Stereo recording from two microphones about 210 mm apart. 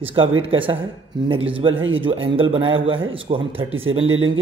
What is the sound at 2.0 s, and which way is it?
A man's voice, 25° right (ahead or behind).